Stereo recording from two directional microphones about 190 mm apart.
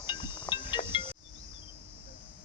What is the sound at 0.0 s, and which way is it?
Music, 25° left (ahead or behind).